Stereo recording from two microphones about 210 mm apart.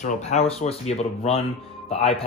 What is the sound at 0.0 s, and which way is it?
Speech, 35° left (ahead or behind).